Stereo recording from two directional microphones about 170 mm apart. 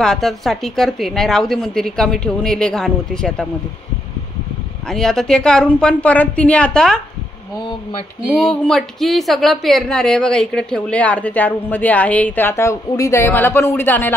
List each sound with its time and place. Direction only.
0.0 s a woman's voice: centre (ahead or behind)
4.8 s a woman's voice: 5° left (ahead or behind)
8.4 s a woman's voice: 5° left (ahead or behind)